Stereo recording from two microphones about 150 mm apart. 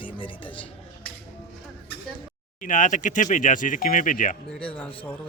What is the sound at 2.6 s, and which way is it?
Speech, 60° left (ahead or behind).